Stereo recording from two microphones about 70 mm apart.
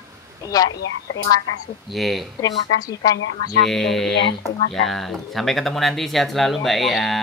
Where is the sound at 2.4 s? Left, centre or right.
Left.